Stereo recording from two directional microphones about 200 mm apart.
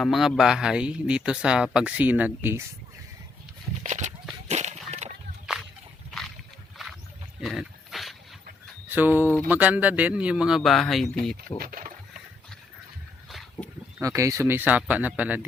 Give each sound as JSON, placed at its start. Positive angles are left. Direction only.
{"t": 0.0, "sound": "speech", "side_deg": 0}
{"t": 3.8, "sound": "horse", "side_deg": -35}
{"t": 4.4, "sound": "walk", "side_deg": -35}
{"t": 6.1, "sound": "a sound", "side_deg": 0}
{"t": 7.4, "sound": "dog", "side_deg": 0}
{"t": 8.9, "sound": "speech", "side_deg": -10}
{"t": 11.6, "sound": "a sound", "side_deg": -45}
{"t": 13.2, "sound": "a sound", "side_deg": 0}
{"t": 14.0, "sound": "speech", "side_deg": -15}